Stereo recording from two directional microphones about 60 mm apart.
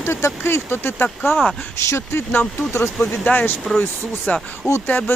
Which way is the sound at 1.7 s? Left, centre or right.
Left.